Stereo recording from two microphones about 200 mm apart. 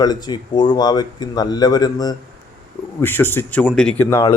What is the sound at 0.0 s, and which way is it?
Speech, 20° left (ahead or behind).